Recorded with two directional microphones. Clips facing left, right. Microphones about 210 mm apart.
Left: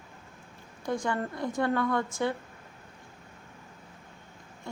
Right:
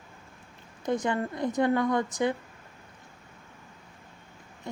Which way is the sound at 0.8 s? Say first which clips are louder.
Right 3 dB; 20° right (ahead or behind).